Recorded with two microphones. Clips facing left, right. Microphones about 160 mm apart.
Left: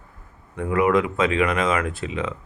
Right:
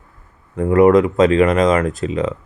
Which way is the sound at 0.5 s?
40° right (ahead or behind).